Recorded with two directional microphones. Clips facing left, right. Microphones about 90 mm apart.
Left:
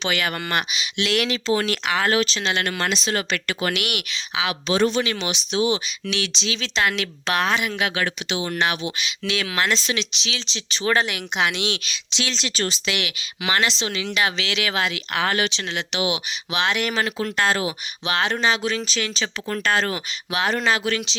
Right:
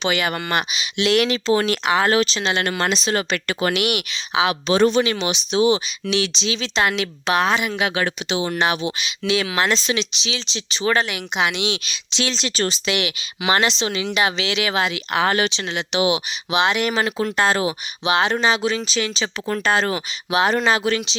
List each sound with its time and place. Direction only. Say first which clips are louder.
0.0 s speech: right 3 dB; 15° right (ahead or behind)
10.4 s speech: right 3 dB; 15° right (ahead or behind)
10.8 s speech: right 1 dB; centre (ahead or behind)
11.9 s speech: right 3 dB; 30° right (ahead or behind)
16.5 s speech: right 4 dB; 15° right (ahead or behind)
18.0 s speech: right 3 dB; 15° right (ahead or behind)